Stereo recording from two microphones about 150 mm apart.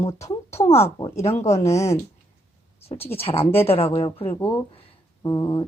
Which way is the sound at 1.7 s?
20° left (ahead or behind).